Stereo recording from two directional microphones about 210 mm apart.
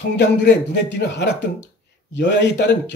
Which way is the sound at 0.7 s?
55° left (ahead or behind).